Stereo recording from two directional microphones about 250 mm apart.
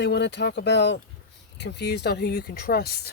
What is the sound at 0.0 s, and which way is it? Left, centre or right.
Speech, left.